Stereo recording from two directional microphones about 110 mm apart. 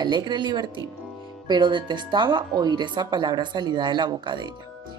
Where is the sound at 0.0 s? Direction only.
40° right (ahead or behind).